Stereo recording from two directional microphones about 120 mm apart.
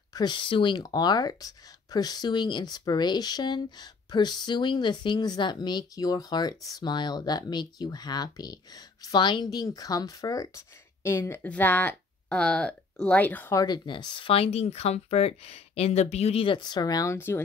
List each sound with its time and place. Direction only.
0.1 s speech: 40° left (ahead or behind); by 13.6 s 15° left (ahead or behind)
13.6 s speech: 35° left (ahead or behind); by 17.4 s 20° left (ahead or behind)